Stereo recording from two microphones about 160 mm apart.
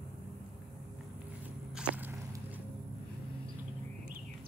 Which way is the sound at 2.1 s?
15° right (ahead or behind).